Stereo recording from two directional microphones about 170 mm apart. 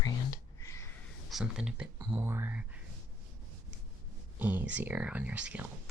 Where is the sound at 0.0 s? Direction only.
20° left (ahead or behind).